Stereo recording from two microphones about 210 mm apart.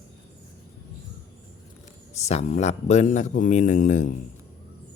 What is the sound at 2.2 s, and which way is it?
A man's voice, 30° left (ahead or behind).